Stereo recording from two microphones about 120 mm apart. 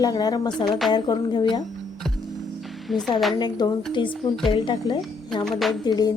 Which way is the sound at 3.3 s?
35° left (ahead or behind).